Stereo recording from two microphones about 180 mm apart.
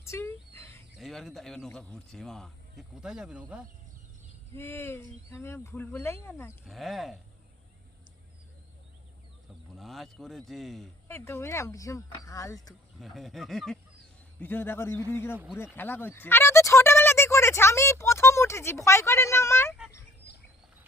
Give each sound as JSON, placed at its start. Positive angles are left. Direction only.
{"t": 0.0, "sound": "a sound", "side_deg": 15}
{"t": 0.9, "sound": "a man's voice", "side_deg": 0}
{"t": 4.5, "sound": "speech", "side_deg": 15}
{"t": 6.7, "sound": "a man's voice", "side_deg": 0}
{"t": 9.7, "sound": "a man's voice", "side_deg": 0}
{"t": 11.1, "sound": "speech", "side_deg": 15}
{"t": 13.0, "sound": "a man's voice", "side_deg": 0}